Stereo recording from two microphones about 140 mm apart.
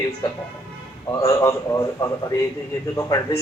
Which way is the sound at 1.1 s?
25° left (ahead or behind).